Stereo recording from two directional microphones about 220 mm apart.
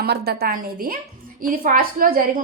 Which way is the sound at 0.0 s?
45° right (ahead or behind).